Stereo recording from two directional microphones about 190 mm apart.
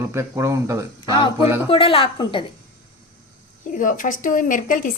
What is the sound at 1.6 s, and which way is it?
Speech, 30° left (ahead or behind).